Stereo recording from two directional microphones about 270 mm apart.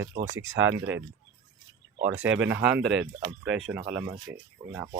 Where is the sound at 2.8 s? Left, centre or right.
Right.